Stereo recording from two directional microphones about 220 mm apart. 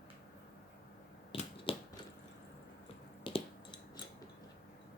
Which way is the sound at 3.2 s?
20° left (ahead or behind).